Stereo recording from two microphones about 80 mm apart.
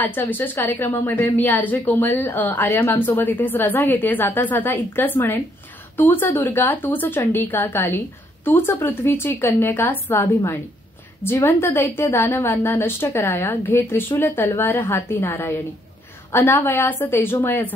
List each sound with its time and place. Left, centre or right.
0.0 s a woman's voice: left